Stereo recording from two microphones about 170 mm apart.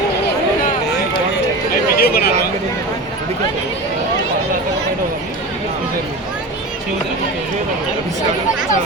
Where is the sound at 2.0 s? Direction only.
60° left (ahead or behind).